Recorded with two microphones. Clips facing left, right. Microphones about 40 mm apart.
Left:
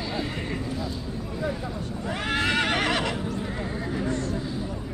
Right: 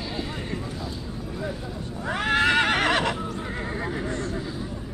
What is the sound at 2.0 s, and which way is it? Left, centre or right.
Neigh, right.